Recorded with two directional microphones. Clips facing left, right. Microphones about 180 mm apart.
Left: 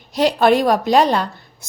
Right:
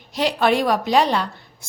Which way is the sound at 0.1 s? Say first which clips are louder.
Left 5 dB; 40° left (ahead or behind).